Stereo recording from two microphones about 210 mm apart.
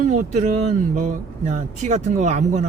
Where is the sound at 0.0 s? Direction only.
35° right (ahead or behind).